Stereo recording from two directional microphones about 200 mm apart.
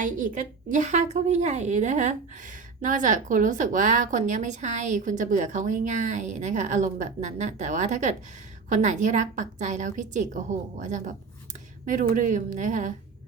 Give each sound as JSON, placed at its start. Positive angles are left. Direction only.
{"t": 0.0, "sound": "a woman's voice", "side_deg": -40}